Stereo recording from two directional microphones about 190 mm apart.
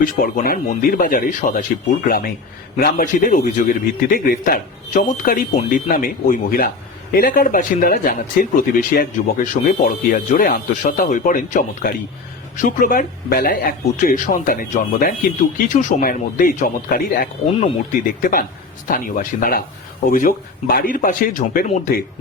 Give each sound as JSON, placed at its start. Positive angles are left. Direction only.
{"t": 0.0, "sound": "speech", "side_deg": 45}